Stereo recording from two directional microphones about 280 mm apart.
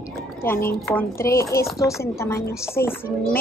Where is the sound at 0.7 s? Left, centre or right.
Centre.